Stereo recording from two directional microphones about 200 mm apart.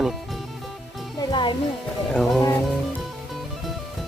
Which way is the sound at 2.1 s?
Centre (ahead or behind).